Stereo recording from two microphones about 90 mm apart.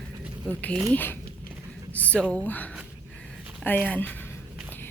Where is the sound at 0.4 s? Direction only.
10° left (ahead or behind).